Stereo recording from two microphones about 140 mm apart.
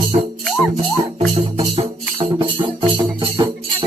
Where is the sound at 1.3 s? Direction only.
40° right (ahead or behind).